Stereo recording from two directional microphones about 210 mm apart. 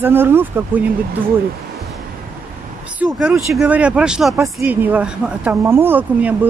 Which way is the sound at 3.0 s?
5° right (ahead or behind).